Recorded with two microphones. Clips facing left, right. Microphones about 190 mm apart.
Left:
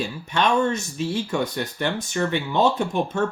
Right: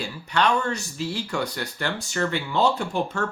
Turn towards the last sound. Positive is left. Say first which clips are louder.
# left 3 dB
turn(degrees=20)  # may be behind; listen again after turning